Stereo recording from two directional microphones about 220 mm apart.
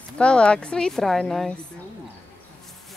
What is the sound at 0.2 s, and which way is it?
Speech, 5° left (ahead or behind).